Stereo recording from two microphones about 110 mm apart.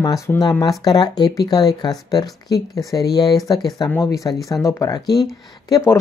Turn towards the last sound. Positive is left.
turn(degrees=25)  # may be behind; listen again after turning